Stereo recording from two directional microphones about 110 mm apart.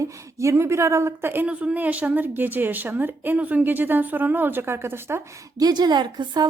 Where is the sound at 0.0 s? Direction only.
25° right (ahead or behind).